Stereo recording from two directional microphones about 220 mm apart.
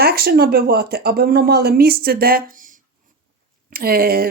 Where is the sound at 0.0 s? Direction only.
45° right (ahead or behind).